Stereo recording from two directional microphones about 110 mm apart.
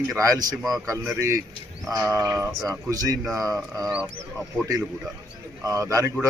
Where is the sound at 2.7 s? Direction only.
35° right (ahead or behind).